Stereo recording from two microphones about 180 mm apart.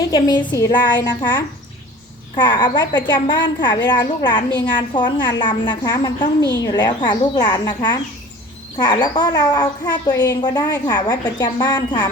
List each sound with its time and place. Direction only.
0.0 s a woman's voice: 20° left (ahead or behind)